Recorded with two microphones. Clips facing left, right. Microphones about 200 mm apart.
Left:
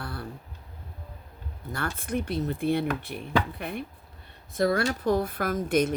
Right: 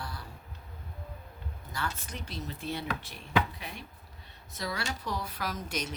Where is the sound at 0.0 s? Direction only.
60° left (ahead or behind).